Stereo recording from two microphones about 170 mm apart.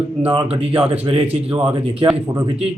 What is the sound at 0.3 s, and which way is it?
A man's voice, 30° right (ahead or behind).